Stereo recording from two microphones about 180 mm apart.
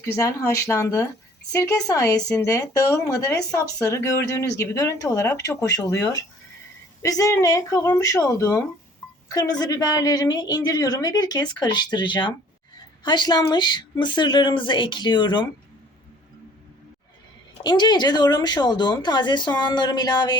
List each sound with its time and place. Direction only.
0.0 s a woman's voice: 15° left (ahead or behind)
17.6 s a woman's voice: 25° left (ahead or behind)